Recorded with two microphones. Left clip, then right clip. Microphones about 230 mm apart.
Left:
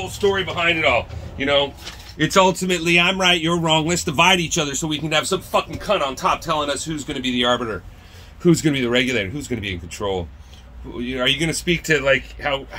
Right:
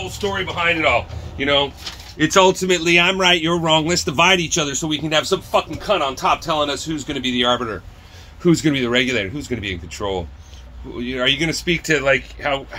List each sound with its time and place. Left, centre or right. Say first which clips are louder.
0.3 s speech: right 1 dB; left
1.4 s speech: right 1 dB; centre